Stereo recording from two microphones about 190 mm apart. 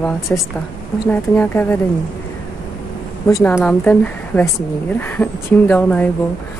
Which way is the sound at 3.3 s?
20° left (ahead or behind).